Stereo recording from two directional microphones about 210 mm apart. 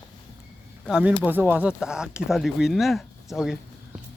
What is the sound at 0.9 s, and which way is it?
Speech, 5° right (ahead or behind).